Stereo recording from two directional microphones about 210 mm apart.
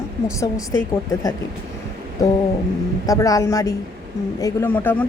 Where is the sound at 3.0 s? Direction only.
15° left (ahead or behind).